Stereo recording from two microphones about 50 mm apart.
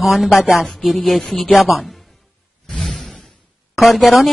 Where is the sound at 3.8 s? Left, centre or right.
Centre.